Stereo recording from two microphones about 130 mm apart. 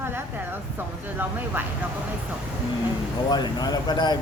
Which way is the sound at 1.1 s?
15° right (ahead or behind).